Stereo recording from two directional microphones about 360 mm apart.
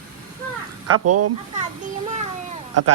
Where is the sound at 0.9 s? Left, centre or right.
Right.